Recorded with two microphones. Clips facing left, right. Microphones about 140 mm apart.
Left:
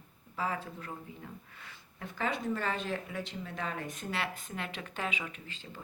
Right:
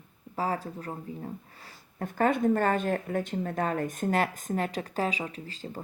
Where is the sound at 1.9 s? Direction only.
50° right (ahead or behind).